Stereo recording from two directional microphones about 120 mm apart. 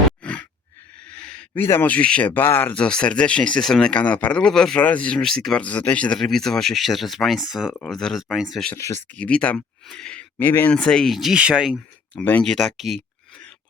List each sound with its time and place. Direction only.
0.2 s a sound: 10° left (ahead or behind)
1.6 s speech: 15° left (ahead or behind); by 8.7 s centre (ahead or behind)
8.7 s speech: 20° left (ahead or behind)
9.1 s speech: 10° left (ahead or behind)
10.3 s speech: 20° left (ahead or behind)
10.7 s speech: 10° left (ahead or behind)
12.1 s speech: 10° left (ahead or behind)